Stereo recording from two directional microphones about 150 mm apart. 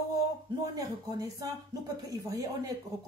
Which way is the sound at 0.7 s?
25° right (ahead or behind).